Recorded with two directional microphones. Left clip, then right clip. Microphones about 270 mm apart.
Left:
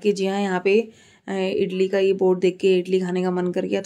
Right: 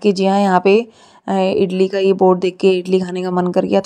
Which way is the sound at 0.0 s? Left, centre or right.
Right.